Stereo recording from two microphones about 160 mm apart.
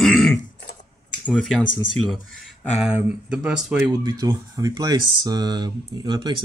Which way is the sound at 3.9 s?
25° right (ahead or behind).